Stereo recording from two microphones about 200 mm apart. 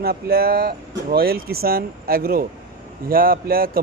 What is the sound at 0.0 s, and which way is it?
Speech, 50° right (ahead or behind).